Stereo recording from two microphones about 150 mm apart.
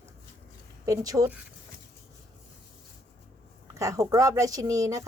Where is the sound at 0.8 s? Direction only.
25° right (ahead or behind).